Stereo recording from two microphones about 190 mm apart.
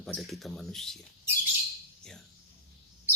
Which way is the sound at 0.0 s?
Centre (ahead or behind).